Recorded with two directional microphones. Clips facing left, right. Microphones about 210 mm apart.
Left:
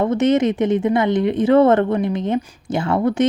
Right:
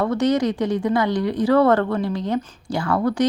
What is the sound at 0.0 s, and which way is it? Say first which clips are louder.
Speech: left 3 dB; 20° left (ahead or behind).